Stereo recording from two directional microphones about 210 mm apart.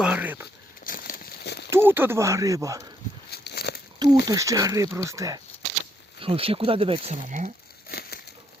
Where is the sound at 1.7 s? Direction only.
10° right (ahead or behind).